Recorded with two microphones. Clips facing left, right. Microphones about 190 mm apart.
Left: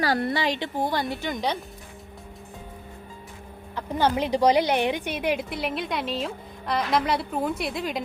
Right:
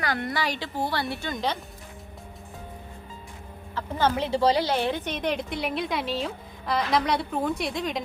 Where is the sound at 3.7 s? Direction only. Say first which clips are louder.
Left 1 dB; 15° left (ahead or behind).